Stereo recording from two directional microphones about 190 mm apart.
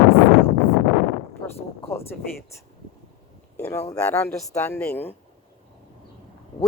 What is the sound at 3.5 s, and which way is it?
A woman's voice, 10° left (ahead or behind).